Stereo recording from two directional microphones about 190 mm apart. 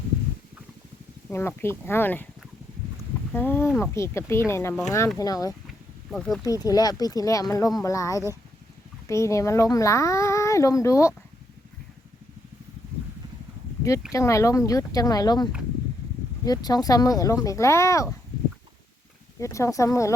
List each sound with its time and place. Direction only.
1.3 s speech: 15° left (ahead or behind)
3.3 s speech: 10° left (ahead or behind)
6.1 s speech: centre (ahead or behind)
6.4 s speech: 20° left (ahead or behind)
14.1 s speech: 15° left (ahead or behind)
16.5 s speech: 20° left (ahead or behind)
19.4 s speech: 15° left (ahead or behind)